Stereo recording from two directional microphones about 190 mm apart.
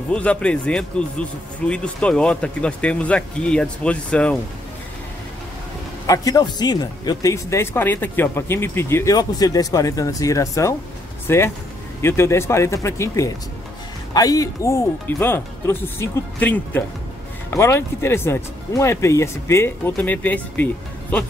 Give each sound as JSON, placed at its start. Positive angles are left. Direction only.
{"t": 0.1, "sound": "speech", "side_deg": 5}
{"t": 6.0, "sound": "speech", "side_deg": 20}